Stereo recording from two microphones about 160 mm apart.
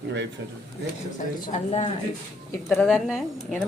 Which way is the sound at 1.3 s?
45° left (ahead or behind).